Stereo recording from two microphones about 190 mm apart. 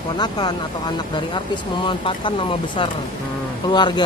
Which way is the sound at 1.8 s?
25° left (ahead or behind).